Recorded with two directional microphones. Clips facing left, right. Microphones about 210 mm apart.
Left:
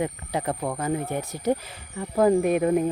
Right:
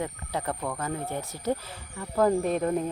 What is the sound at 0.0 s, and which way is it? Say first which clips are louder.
Speech: left 4 dB; 15° left (ahead or behind).